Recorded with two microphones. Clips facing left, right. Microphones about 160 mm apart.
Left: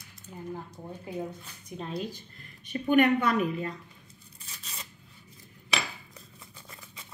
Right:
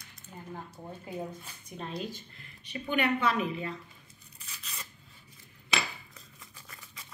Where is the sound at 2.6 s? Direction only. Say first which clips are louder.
Left 7 dB; 50° left (ahead or behind).